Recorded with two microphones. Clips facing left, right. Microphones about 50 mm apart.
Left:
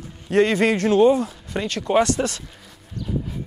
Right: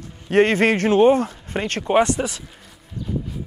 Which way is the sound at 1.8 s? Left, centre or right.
Right.